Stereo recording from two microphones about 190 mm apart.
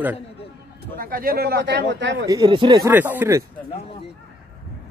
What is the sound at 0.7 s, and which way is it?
Speech, 50° right (ahead or behind).